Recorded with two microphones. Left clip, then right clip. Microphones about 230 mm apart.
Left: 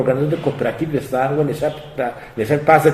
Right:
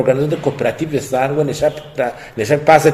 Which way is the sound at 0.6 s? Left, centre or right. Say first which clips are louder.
Right 3 dB; right.